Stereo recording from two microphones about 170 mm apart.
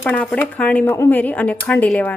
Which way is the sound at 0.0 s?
5° left (ahead or behind).